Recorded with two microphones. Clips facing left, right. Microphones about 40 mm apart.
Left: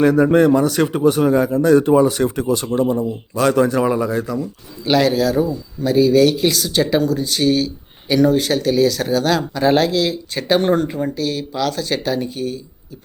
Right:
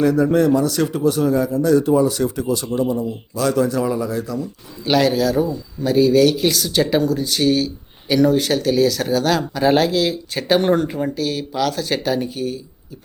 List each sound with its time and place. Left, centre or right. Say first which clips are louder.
0.0 s a man's voice: left 3 dB; left
4.9 s speech: left 1 dB; centre